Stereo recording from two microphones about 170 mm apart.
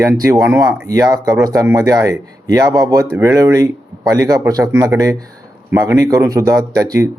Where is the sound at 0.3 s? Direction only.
15° right (ahead or behind).